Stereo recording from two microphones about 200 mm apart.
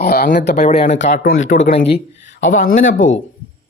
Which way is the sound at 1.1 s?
45° left (ahead or behind).